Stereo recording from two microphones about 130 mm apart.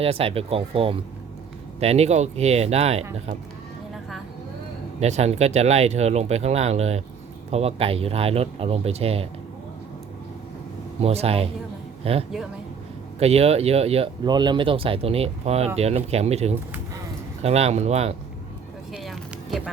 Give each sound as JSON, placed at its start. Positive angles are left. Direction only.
{"t": 0.0, "sound": "speech", "side_deg": -50}
{"t": 4.9, "sound": "speech", "side_deg": -60}
{"t": 11.0, "sound": "speech", "side_deg": -50}
{"t": 14.3, "sound": "speech", "side_deg": -35}
{"t": 18.9, "sound": "a sound", "side_deg": 0}